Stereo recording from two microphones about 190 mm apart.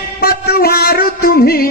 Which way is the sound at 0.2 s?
55° left (ahead or behind).